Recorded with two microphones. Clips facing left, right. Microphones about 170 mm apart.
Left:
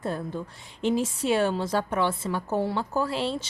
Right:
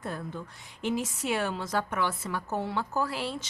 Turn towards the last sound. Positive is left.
turn(degrees=25)  # may be behind; listen again after turning